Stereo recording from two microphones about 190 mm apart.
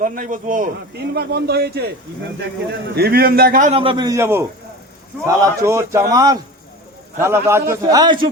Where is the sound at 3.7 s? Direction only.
30° right (ahead or behind).